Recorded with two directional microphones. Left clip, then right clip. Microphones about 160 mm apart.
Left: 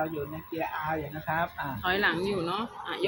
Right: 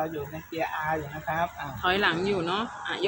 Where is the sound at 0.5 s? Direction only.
25° left (ahead or behind).